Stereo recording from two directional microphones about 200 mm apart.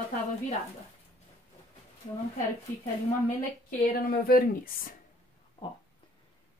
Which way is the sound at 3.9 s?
45° left (ahead or behind).